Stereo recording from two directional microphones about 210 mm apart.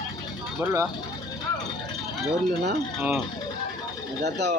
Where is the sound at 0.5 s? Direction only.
15° right (ahead or behind).